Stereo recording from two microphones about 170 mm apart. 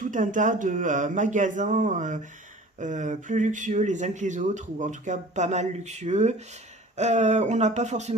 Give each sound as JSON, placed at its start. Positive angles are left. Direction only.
{"t": 0.0, "sound": "speech", "side_deg": -50}